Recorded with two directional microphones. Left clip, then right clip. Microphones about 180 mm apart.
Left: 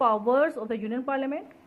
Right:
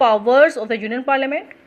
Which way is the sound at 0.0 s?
20° right (ahead or behind).